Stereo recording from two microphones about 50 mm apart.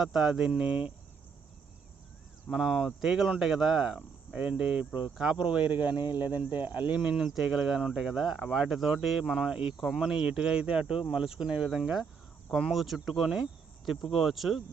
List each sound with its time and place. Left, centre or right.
0.0 s speech: centre
0.6 s speech: right
2.5 s speech: centre
4.4 s speech: centre
7.0 s speech: centre
9.2 s speech: centre
9.5 s speech: centre
9.7 s speech: centre
10.0 s speech: centre
12.5 s speech: centre